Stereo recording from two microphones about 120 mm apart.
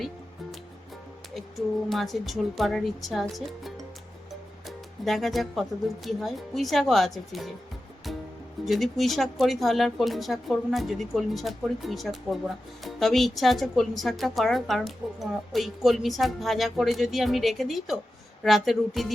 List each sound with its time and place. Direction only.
1.3 s speech: centre (ahead or behind)
8.6 s speech: centre (ahead or behind)